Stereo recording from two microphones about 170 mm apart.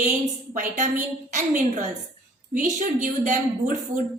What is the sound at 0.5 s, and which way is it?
A woman's voice, 50° right (ahead or behind).